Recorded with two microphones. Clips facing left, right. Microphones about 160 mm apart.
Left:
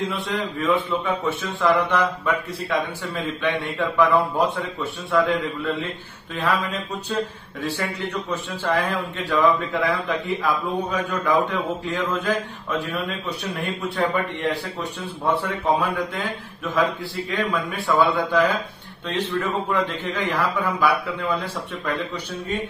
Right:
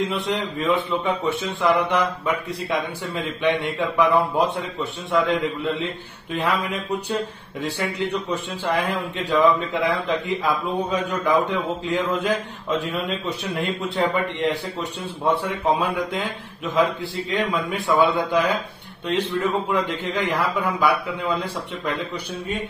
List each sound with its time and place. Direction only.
0.0 s a man's voice: 20° right (ahead or behind)
17.3 s a man's voice: 20° right (ahead or behind)